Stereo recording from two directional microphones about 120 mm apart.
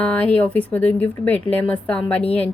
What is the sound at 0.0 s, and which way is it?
A woman's voice, 10° left (ahead or behind).